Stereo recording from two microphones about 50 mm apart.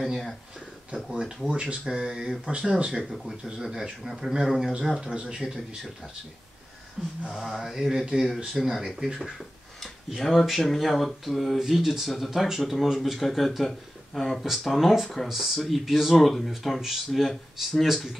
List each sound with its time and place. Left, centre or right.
0.0 s speech: centre
0.9 s speech: centre
3.0 s speech: centre
3.4 s speech: centre
5.1 s a man's voice: centre
7.2 s speech: centre
9.8 s speech: centre